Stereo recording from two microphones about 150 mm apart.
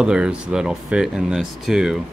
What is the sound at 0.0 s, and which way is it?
Speech, 5° right (ahead or behind).